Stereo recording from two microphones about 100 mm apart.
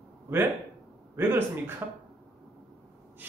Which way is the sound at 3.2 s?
20° right (ahead or behind).